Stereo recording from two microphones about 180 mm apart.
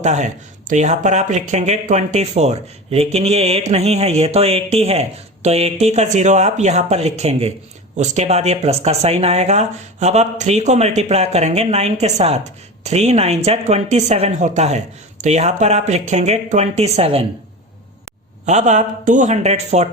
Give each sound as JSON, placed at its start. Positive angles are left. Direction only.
{"t": 0.0, "sound": "speech", "side_deg": -40}
{"t": 18.4, "sound": "speech", "side_deg": -40}